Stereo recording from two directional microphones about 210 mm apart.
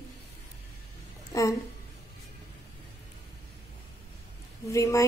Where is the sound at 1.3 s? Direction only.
15° left (ahead or behind).